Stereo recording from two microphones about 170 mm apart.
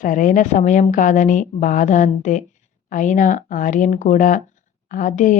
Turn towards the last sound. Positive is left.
turn(degrees=50)  # may be behind; listen again after turning